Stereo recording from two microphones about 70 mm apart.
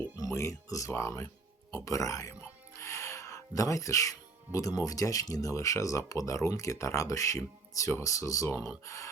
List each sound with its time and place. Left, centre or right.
0.3 s speech: left